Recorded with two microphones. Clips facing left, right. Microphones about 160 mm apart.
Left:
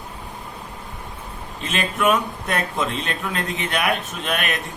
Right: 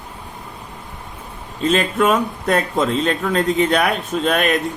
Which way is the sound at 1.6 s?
35° right (ahead or behind).